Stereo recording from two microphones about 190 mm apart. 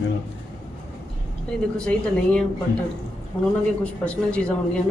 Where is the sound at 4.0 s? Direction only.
5° left (ahead or behind).